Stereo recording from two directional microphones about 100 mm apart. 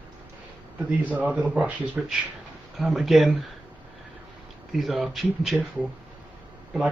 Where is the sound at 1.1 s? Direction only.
15° right (ahead or behind).